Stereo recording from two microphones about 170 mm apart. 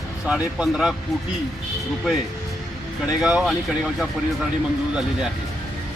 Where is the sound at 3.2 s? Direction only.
5° right (ahead or behind).